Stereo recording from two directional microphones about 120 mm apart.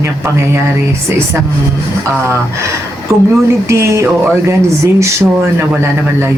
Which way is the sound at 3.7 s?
25° right (ahead or behind).